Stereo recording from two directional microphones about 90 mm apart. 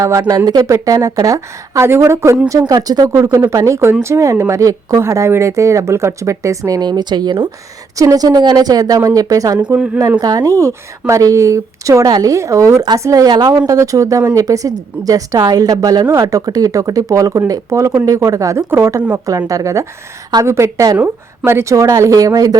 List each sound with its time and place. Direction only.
0.0 s a woman's voice: 35° right (ahead or behind)
2.5 s a woman's voice: 40° right (ahead or behind); by 7.5 s 60° right (ahead or behind)
7.9 s a woman's voice: 40° right (ahead or behind)
9.7 s speech: 15° right (ahead or behind)
10.2 s a woman's voice: 45° right (ahead or behind)
13.7 s a woman's voice: 40° right (ahead or behind)
18.7 s speech: 25° right (ahead or behind)
19.1 s a woman's voice: 40° right (ahead or behind)